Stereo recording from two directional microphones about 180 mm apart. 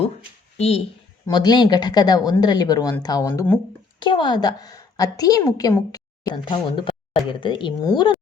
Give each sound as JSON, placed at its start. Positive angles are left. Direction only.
{"t": 0.5, "sound": "speech", "side_deg": 35}
{"t": 1.3, "sound": "a woman's voice", "side_deg": 25}
{"t": 4.0, "sound": "a woman's voice", "side_deg": 25}